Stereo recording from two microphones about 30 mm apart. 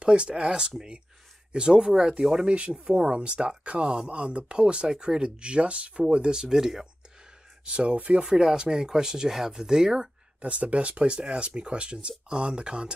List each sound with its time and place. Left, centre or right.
0.0 s speech: right
2.4 s speech: right
6.5 s speech: centre
7.6 s speech: right
8.2 s speech: right
10.4 s speech: right